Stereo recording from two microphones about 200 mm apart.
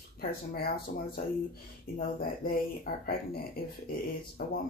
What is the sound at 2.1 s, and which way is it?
Speech, 45° left (ahead or behind).